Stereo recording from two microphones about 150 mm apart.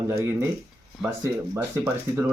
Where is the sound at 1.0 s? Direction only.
5° right (ahead or behind).